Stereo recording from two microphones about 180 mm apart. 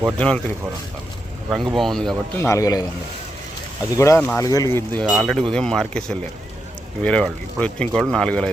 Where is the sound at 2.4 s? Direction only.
15° left (ahead or behind).